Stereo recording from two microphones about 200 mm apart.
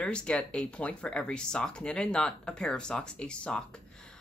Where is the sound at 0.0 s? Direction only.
5° left (ahead or behind).